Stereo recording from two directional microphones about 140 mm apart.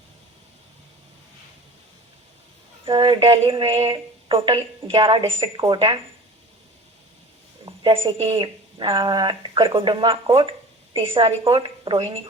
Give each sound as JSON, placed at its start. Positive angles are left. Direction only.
{"t": 2.8, "sound": "speech", "side_deg": -40}
{"t": 7.6, "sound": "a sound", "side_deg": -35}
{"t": 8.3, "sound": "speech", "side_deg": -35}